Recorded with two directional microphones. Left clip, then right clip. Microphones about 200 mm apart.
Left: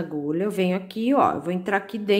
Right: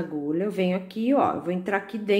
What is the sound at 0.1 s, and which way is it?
Speech, 20° left (ahead or behind).